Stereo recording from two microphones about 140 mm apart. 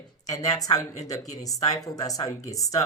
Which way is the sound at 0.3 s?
25° left (ahead or behind).